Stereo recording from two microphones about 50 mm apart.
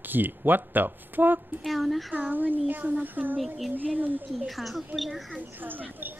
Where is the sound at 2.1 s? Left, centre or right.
Right.